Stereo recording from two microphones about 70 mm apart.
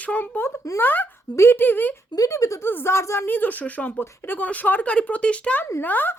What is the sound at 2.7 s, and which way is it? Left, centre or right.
Speech, left.